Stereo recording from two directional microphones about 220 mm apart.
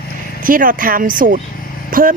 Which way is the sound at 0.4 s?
40° right (ahead or behind).